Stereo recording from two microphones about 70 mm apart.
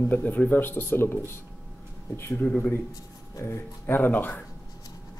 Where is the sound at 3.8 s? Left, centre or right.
Left.